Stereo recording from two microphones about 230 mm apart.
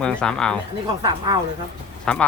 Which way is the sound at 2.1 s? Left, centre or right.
Centre.